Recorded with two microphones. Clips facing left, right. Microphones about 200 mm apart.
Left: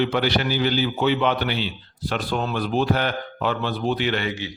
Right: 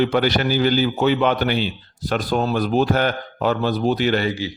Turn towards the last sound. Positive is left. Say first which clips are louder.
# right 5 dB
turn(degrees=-35)  # may be behind; listen again after turning